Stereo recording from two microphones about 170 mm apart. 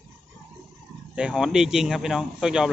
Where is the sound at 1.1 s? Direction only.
5° right (ahead or behind).